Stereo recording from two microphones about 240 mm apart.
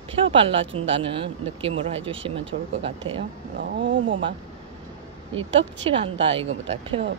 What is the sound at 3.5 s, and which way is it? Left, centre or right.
Speech, right.